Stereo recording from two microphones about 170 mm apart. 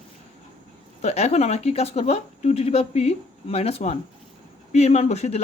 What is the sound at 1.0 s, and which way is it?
Speech, 40° left (ahead or behind).